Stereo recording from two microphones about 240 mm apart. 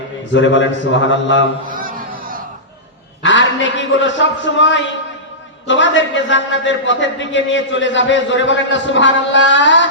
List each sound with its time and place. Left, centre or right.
0.3 s a man's voice: left
1.6 s a sound: right
3.2 s a man's voice: left